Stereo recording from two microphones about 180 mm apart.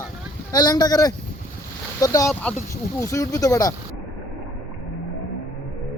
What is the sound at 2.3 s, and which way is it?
Speech, 5° left (ahead or behind).